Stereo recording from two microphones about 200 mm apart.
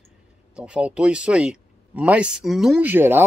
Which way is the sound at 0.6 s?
5° right (ahead or behind).